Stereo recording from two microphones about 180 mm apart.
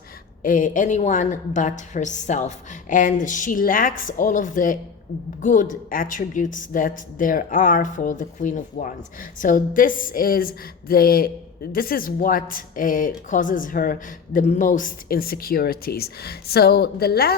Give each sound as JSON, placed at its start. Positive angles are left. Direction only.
{"t": 0.4, "sound": "a woman's voice", "side_deg": 45}